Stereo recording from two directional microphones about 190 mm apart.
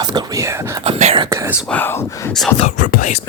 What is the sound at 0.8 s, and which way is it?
Speech, 35° right (ahead or behind).